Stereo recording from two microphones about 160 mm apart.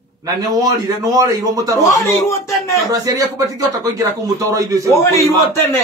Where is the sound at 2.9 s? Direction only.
25° right (ahead or behind).